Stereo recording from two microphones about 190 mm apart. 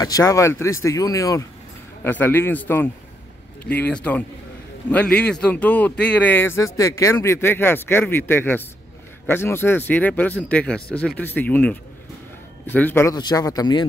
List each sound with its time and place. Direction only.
0.0 s a man's voice: 20° left (ahead or behind)